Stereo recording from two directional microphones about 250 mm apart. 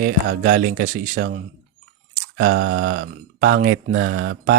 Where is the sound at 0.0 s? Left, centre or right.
Right.